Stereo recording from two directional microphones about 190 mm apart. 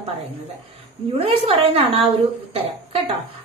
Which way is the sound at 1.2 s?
30° right (ahead or behind).